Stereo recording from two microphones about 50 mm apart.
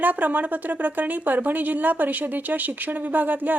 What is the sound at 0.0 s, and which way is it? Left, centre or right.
Speech, right.